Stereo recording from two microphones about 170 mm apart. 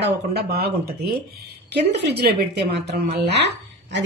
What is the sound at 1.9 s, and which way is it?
Speech, 75° right (ahead or behind).